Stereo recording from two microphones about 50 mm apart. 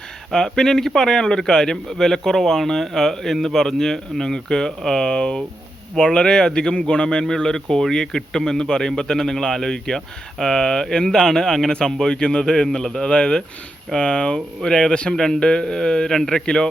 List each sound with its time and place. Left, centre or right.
0.3 s speech: centre